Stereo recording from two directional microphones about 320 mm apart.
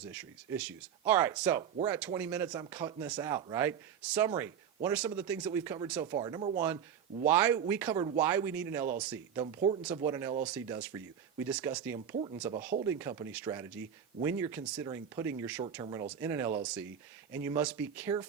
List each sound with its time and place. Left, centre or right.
0.0 s speech: centre
11.9 s speech: centre
12.4 s speech: centre